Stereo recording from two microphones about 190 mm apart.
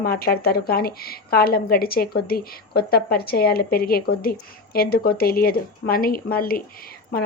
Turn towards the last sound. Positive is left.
turn(degrees=50)  # may be behind; listen again after turning